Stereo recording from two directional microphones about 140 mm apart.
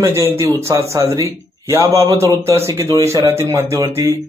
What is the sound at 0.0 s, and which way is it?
Speech, 15° right (ahead or behind).